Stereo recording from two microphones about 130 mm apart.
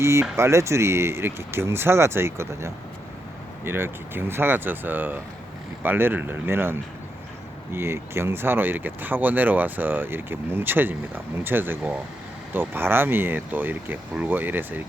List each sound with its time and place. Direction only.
0.0 s speech: 20° right (ahead or behind)